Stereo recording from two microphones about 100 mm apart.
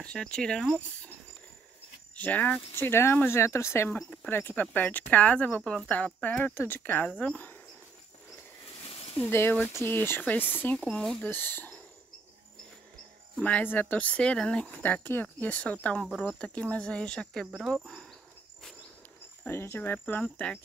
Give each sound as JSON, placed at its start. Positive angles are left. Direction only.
{"t": 0.0, "sound": "speech", "side_deg": 10}
{"t": 2.1, "sound": "speech", "side_deg": 15}
{"t": 3.9, "sound": "speech", "side_deg": 10}
{"t": 5.6, "sound": "speech", "side_deg": 0}
{"t": 5.9, "sound": "speech", "side_deg": 15}
{"t": 9.3, "sound": "speech", "side_deg": 25}
{"t": 10.8, "sound": "speech", "side_deg": 5}
{"t": 11.2, "sound": "speech", "side_deg": 20}
{"t": 13.4, "sound": "speech", "side_deg": 15}
{"t": 19.4, "sound": "speech", "side_deg": 25}